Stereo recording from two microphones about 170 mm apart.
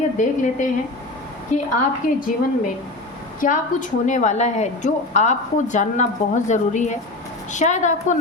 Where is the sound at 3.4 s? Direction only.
50° left (ahead or behind).